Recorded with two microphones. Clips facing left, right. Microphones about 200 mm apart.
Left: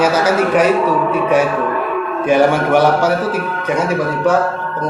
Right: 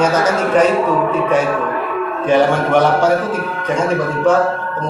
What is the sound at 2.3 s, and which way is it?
Speech, 10° left (ahead or behind).